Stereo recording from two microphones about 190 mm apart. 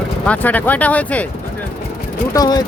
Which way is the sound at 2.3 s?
20° left (ahead or behind).